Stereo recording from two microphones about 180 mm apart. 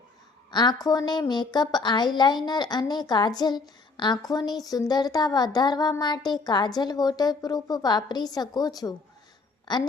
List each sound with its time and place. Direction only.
0.5 s a woman's voice: 25° left (ahead or behind)